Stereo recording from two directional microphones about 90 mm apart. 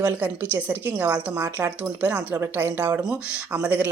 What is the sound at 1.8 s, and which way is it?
Speech, 15° right (ahead or behind).